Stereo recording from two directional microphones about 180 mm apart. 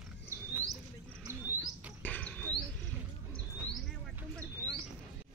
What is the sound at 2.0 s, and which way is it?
Insect, 10° left (ahead or behind).